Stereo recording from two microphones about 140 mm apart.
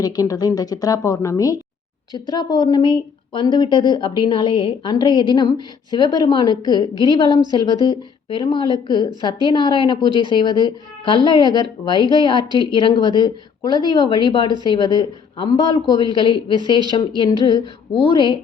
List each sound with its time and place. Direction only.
0.0 s a woman's voice: 25° left (ahead or behind)